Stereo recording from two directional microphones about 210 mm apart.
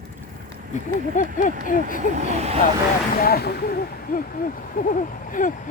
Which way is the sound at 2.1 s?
35° right (ahead or behind).